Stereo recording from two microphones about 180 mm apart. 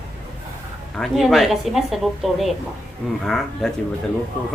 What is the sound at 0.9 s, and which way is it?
A man's voice, centre (ahead or behind).